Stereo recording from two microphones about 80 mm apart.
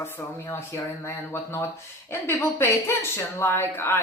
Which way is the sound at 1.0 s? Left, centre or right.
Left.